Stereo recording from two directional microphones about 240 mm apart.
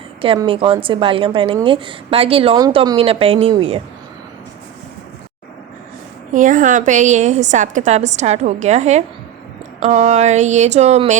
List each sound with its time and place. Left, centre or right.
0.2 s a woman's voice: right
6.3 s a woman's voice: right